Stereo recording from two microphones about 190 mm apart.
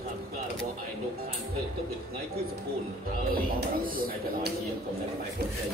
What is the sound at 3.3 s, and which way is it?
Speech, 50° right (ahead or behind).